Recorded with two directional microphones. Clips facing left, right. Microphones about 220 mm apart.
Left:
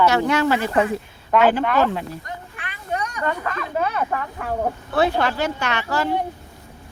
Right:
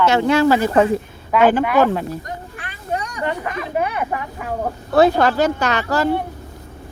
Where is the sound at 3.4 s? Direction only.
20° right (ahead or behind).